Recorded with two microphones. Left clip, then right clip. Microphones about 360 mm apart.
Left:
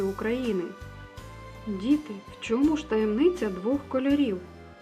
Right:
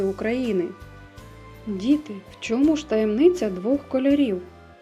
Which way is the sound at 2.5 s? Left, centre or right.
Centre.